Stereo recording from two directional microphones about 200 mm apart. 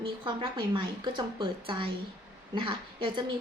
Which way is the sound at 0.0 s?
25° right (ahead or behind).